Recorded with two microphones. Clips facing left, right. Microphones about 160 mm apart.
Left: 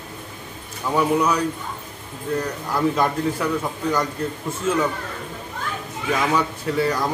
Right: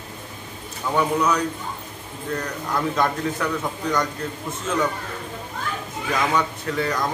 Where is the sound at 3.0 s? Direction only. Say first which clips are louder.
Left 1 dB; 10° left (ahead or behind).